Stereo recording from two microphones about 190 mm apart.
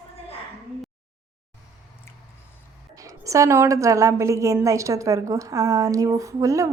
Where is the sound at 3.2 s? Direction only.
15° right (ahead or behind).